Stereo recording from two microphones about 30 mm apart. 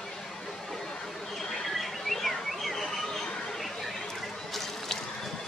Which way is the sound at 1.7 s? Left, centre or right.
Centre.